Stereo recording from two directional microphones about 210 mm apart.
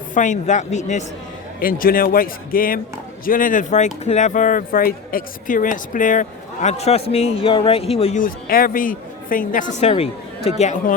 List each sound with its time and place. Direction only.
0.1 s speech: 35° left (ahead or behind)
9.8 s speech: 30° left (ahead or behind)